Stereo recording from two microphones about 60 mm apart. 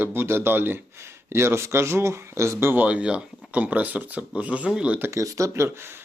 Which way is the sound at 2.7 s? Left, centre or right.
Right.